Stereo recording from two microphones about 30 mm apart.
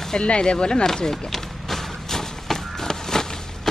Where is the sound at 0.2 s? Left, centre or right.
Left.